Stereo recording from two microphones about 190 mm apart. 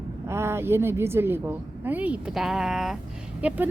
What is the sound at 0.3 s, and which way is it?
A woman's voice, 15° right (ahead or behind).